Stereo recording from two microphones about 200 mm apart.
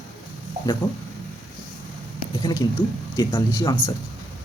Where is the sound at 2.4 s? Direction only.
20° left (ahead or behind).